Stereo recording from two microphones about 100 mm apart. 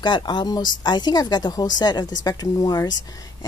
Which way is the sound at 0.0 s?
50° left (ahead or behind).